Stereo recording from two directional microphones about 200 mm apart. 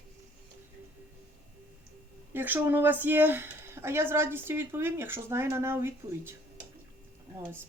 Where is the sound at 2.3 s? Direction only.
10° right (ahead or behind).